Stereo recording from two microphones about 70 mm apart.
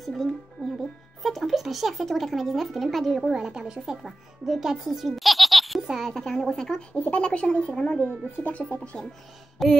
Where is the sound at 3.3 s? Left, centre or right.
Centre.